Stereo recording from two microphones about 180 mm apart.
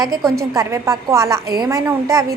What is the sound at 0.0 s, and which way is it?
A woman's voice, 20° right (ahead or behind).